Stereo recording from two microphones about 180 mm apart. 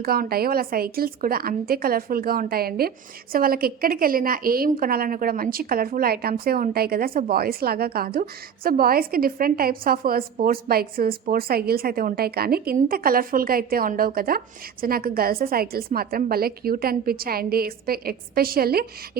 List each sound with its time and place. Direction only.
0.0 s a woman's voice: 55° right (ahead or behind)